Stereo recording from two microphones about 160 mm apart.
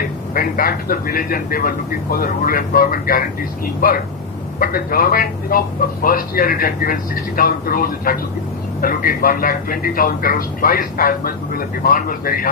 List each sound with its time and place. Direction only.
0.3 s a man's voice: 65° left (ahead or behind)